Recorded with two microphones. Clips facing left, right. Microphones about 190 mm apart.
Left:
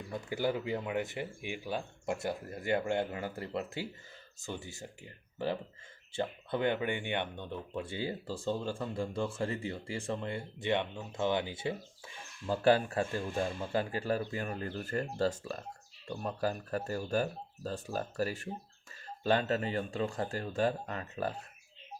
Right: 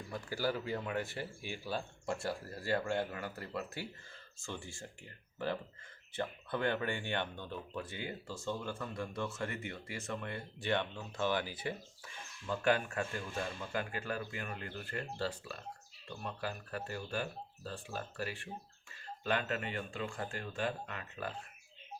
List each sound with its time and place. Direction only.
0.1 s speech: 20° left (ahead or behind); by 21.3 s 35° left (ahead or behind)